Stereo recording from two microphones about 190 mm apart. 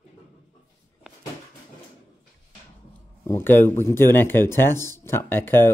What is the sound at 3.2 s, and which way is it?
Speech, 10° left (ahead or behind).